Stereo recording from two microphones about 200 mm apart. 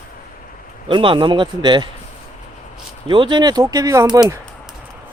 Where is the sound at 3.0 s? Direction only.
25° right (ahead or behind).